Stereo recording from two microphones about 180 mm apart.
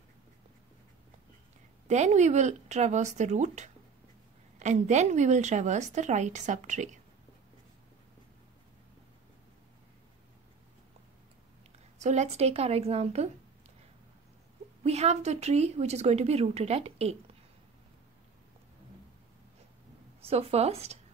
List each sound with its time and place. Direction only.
1.9 s a woman's voice: 40° right (ahead or behind)
12.0 s a woman's voice: 40° right (ahead or behind)
14.8 s a woman's voice: 35° right (ahead or behind)
20.2 s a woman's voice: 35° right (ahead or behind)